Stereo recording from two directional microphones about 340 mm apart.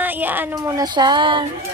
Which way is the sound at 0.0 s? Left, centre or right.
Centre.